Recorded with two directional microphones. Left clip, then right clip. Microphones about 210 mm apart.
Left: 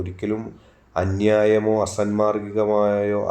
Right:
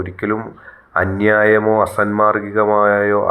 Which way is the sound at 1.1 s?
5° right (ahead or behind).